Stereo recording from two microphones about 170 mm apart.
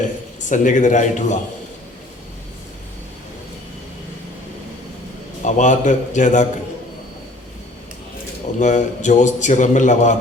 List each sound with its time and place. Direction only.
0.4 s a man's voice: 45° left (ahead or behind)
5.4 s a man's voice: 45° left (ahead or behind)
8.5 s a man's voice: 45° left (ahead or behind)